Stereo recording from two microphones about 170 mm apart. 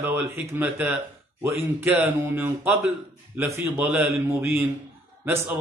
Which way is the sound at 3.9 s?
Centre (ahead or behind).